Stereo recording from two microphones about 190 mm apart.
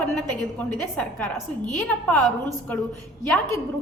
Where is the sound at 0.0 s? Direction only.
5° left (ahead or behind).